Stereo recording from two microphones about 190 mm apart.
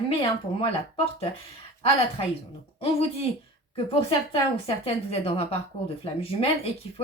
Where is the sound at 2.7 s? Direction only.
30° left (ahead or behind).